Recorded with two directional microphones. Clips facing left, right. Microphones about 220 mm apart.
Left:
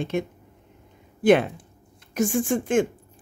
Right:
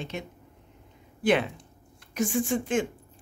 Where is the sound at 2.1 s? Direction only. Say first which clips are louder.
Left 4 dB; 50° left (ahead or behind).